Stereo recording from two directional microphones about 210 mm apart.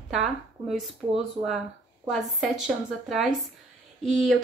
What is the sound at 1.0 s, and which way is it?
Speech, 20° right (ahead or behind).